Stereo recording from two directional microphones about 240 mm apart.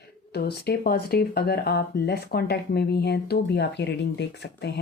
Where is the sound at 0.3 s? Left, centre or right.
Left.